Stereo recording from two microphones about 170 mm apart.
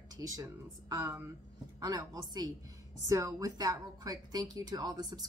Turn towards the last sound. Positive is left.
turn(degrees=-25)  # may be behind; listen again after turning